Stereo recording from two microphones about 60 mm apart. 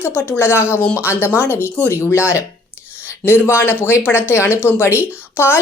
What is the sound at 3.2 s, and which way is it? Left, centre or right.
Speech, left.